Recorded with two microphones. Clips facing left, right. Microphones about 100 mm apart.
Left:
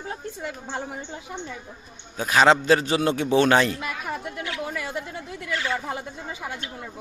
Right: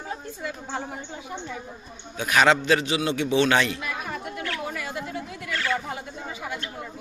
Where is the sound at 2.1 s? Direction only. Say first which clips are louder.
Left 2 dB; 30° left (ahead or behind).